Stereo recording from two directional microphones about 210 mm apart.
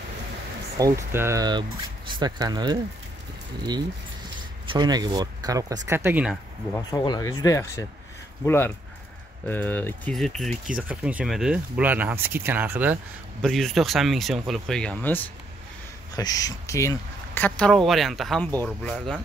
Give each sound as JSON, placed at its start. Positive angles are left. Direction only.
{"t": 0.7, "sound": "speech", "side_deg": -15}
{"t": 4.6, "sound": "speech", "side_deg": -20}
{"t": 6.7, "sound": "speech", "side_deg": 20}
{"t": 13.4, "sound": "speech", "side_deg": 0}